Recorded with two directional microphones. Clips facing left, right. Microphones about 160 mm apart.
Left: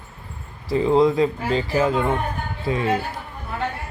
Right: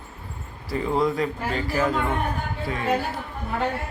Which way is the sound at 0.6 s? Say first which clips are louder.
Left 6 dB; 25° left (ahead or behind).